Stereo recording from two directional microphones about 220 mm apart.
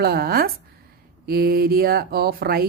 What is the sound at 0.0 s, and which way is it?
Speech, 45° right (ahead or behind).